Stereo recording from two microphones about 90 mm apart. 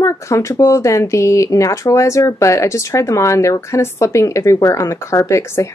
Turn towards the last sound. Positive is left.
turn(degrees=30)  # may be behind; listen again after turning